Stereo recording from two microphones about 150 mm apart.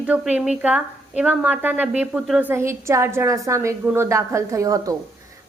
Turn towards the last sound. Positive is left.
turn(degrees=-25)  # may be behind; listen again after turning